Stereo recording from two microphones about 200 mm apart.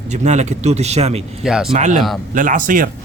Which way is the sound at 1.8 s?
40° right (ahead or behind).